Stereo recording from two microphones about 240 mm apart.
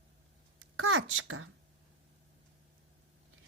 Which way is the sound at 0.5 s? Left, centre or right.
Right.